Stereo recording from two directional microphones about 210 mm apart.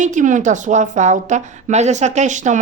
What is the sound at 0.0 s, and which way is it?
Speech, 35° right (ahead or behind).